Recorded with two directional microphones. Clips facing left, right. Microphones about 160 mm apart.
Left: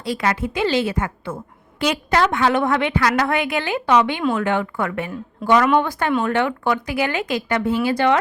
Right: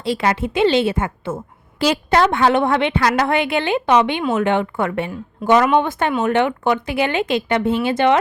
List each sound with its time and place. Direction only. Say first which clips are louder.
0.0 s a woman's voice: right 3 dB; 25° right (ahead or behind)